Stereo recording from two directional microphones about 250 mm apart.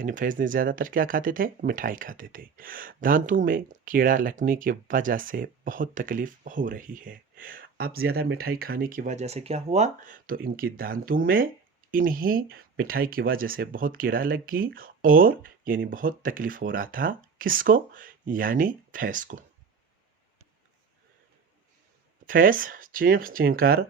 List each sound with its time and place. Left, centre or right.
0.0 s speech: right
22.3 s speech: right